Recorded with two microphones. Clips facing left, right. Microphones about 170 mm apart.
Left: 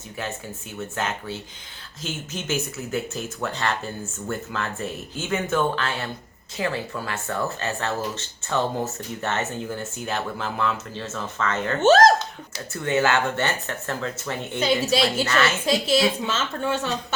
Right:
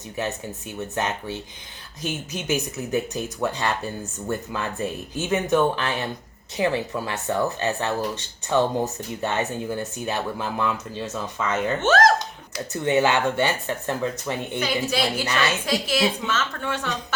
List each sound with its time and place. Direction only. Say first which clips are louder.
0.2 s speech: right 4 dB; 20° right (ahead or behind)
15.6 s a woman's voice: left 2 dB; 25° left (ahead or behind)